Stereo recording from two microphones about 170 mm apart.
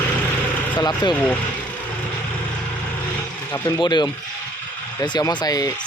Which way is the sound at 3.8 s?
25° left (ahead or behind).